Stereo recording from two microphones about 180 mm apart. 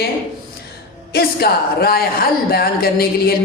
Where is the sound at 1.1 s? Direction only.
60° left (ahead or behind).